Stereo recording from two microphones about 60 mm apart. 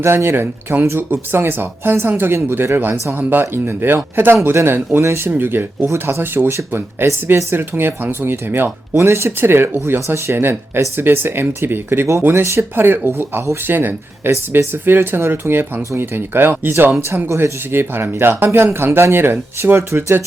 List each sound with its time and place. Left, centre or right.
0.0 s speech: right
5.3 s speech: right
9.0 s speech: right
12.3 s speech: right
12.7 s speech: right
17.0 s speech: right